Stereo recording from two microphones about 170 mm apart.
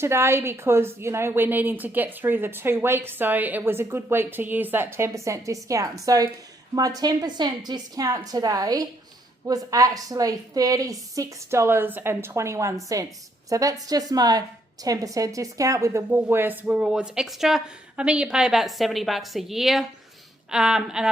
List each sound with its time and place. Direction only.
0.0 s a woman's voice: 15° right (ahead or behind)